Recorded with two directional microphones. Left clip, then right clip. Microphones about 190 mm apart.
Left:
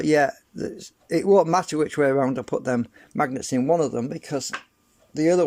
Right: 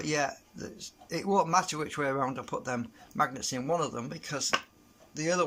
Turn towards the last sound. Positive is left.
turn(degrees=35)  # may be behind; listen again after turning